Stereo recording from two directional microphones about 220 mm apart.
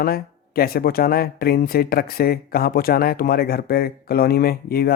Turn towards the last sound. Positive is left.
turn(degrees=45)  # may be behind; listen again after turning